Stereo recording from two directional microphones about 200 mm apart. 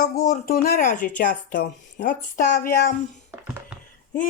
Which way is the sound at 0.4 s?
50° left (ahead or behind).